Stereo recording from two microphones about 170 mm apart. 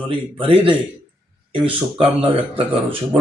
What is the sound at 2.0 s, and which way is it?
A man's voice, 30° right (ahead or behind).